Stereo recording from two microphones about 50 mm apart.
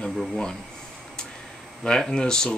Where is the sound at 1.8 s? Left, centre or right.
Centre.